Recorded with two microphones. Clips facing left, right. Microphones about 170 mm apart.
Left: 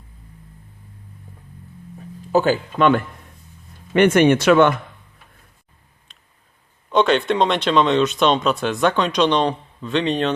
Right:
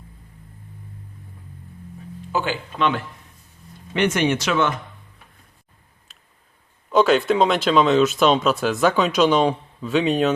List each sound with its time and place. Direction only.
2.3 s speech: 40° left (ahead or behind)
6.1 s a sound: 5° right (ahead or behind)
6.9 s speech: centre (ahead or behind)